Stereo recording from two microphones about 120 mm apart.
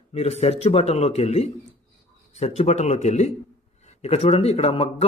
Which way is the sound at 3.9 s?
60° left (ahead or behind).